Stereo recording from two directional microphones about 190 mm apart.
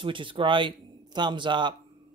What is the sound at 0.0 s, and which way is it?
Speech, 25° right (ahead or behind).